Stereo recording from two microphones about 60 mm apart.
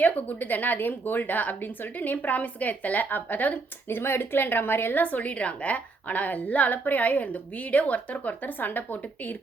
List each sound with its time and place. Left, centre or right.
0.0 s a woman's voice: left